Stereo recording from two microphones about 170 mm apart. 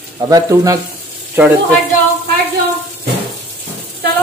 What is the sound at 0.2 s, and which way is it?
Speech, 20° right (ahead or behind).